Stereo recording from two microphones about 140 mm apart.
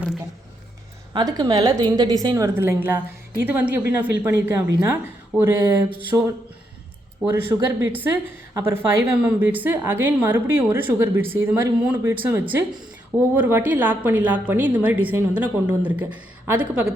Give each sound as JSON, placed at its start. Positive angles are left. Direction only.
{"t": 1.1, "sound": "a woman's voice", "side_deg": -30}
{"t": 7.8, "sound": "a woman's voice", "side_deg": -15}